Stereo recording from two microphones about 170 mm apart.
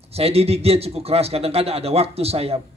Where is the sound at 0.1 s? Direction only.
35° right (ahead or behind).